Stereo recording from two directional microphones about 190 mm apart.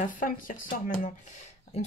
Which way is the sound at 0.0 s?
45° left (ahead or behind).